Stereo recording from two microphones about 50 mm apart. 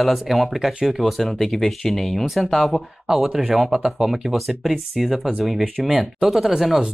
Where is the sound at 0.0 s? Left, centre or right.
Centre.